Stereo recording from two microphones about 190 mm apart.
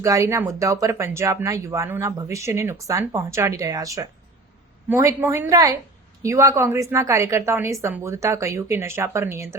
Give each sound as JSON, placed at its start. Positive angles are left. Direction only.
{"t": 0.0, "sound": "speech", "side_deg": -15}